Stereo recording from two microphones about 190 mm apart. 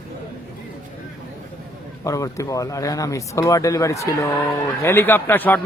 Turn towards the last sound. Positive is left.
turn(degrees=10)  # may be behind; listen again after turning